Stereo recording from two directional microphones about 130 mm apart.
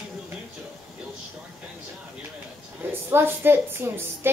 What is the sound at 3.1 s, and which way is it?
A woman's voice, 20° right (ahead or behind).